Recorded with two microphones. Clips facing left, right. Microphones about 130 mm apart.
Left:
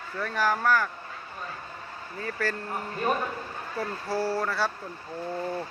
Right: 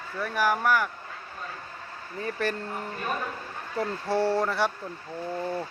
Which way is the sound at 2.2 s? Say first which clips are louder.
Right 2 dB; 20° right (ahead or behind).